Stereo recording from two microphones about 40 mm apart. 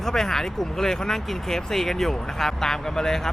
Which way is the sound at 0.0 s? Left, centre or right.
Centre.